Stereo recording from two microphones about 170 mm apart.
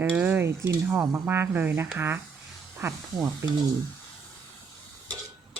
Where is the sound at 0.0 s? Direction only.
10° right (ahead or behind).